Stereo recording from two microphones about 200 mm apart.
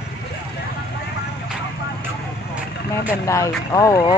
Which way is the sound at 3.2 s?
15° left (ahead or behind).